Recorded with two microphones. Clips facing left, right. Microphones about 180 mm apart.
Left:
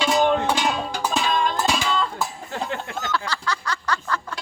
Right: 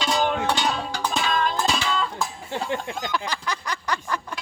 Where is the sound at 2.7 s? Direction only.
15° right (ahead or behind).